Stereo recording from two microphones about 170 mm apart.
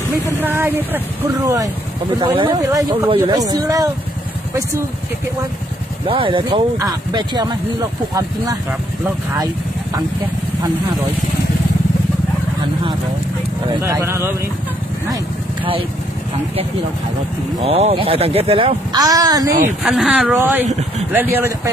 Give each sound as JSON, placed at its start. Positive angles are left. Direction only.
{"t": 0.4, "sound": "speech", "side_deg": -10}
{"t": 2.1, "sound": "speech", "side_deg": -30}
{"t": 6.0, "sound": "speech", "side_deg": -30}
{"t": 13.8, "sound": "speech", "side_deg": -15}
{"t": 17.6, "sound": "speech", "side_deg": -35}
{"t": 18.9, "sound": "speech", "side_deg": -20}
{"t": 19.8, "sound": "speech", "side_deg": 0}